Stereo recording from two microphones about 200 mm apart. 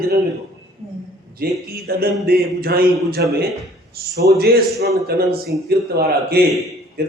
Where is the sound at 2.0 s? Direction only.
50° right (ahead or behind).